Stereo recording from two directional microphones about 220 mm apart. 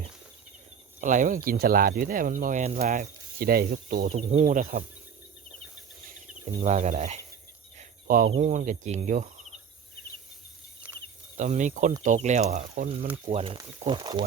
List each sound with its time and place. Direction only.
1.0 s speech: 35° right (ahead or behind)
6.6 s speech: 30° right (ahead or behind)
7.8 s a sound: 40° right (ahead or behind)
8.3 s speech: 35° right (ahead or behind)
10.8 s a sound: 5° right (ahead or behind)
11.3 s speech: 35° right (ahead or behind)